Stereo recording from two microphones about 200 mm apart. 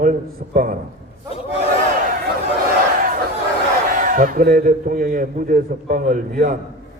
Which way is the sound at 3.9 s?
40° right (ahead or behind).